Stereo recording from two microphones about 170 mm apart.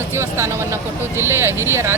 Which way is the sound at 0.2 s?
15° right (ahead or behind).